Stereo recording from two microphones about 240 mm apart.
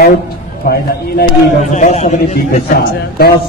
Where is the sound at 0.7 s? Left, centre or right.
Left.